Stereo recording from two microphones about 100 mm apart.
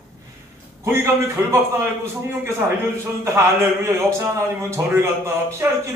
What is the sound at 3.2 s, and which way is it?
A man's voice, 30° right (ahead or behind).